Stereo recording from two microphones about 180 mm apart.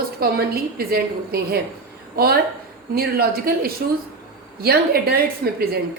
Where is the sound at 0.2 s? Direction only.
55° right (ahead or behind).